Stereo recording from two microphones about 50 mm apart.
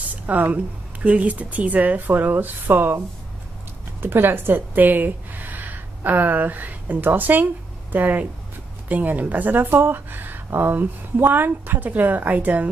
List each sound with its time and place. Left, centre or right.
0.1 s a sound: right
1.0 s a woman's voice: right
4.0 s a woman's voice: right